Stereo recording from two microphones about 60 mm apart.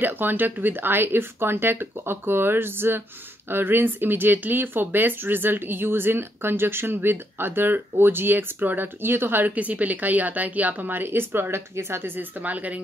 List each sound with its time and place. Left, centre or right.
0.0 s speech: right